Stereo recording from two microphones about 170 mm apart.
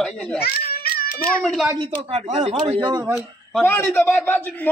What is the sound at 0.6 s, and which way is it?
Cat, 60° left (ahead or behind).